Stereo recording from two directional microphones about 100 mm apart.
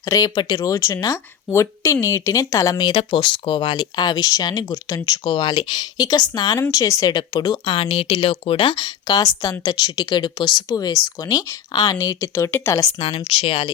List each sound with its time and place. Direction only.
0.0 s speech: 35° left (ahead or behind)
5.2 s speech: 50° left (ahead or behind); by 7.1 s 30° left (ahead or behind)
7.1 s speech: 45° left (ahead or behind)
7.7 s speech: 70° left (ahead or behind)
9.0 s speech: 35° left (ahead or behind)
12.5 s speech: 20° left (ahead or behind)
13.0 s speech: 75° left (ahead or behind)